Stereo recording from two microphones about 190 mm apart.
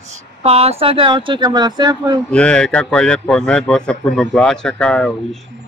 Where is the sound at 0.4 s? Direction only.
30° right (ahead or behind).